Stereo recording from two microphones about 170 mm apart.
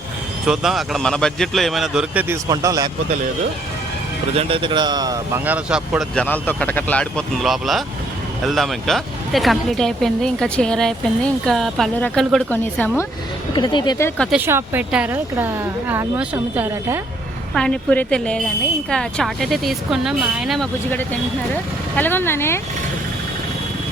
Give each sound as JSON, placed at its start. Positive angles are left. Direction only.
{"t": 0.4, "sound": "speech", "side_deg": -5}
{"t": 4.4, "sound": "a man's voice", "side_deg": -30}
{"t": 5.5, "sound": "speech", "side_deg": -5}
{"t": 6.1, "sound": "speech", "side_deg": 10}
{"t": 13.5, "sound": "speech", "side_deg": 25}
{"t": 14.2, "sound": "speech", "side_deg": 0}
{"t": 14.4, "sound": "speech", "side_deg": -15}
{"t": 17.5, "sound": "speech", "side_deg": 5}
{"t": 21.9, "sound": "speech", "side_deg": 10}